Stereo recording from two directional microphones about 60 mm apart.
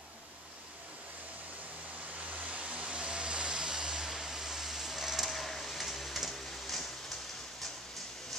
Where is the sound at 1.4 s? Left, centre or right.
Right.